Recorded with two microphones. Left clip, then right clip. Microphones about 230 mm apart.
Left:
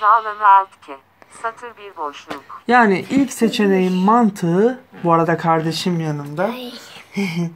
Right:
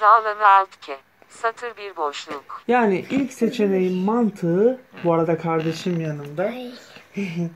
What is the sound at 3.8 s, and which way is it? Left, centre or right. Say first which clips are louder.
Speech: left 3 dB; left.